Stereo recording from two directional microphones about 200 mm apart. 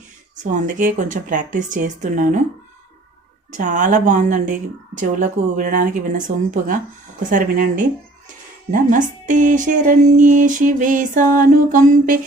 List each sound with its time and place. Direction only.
0.5 s speech: 40° right (ahead or behind)
3.6 s speech: 40° right (ahead or behind)